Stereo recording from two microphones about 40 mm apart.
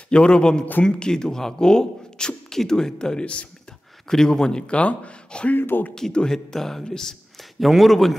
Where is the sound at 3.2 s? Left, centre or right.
Left.